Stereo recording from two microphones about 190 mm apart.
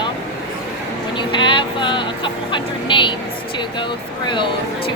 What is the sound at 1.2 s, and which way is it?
Speech, 25° left (ahead or behind).